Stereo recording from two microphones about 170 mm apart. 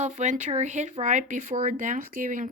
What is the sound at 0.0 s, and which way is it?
Speech, 45° right (ahead or behind).